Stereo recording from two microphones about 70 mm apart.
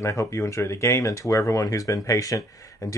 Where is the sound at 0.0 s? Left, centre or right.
Left.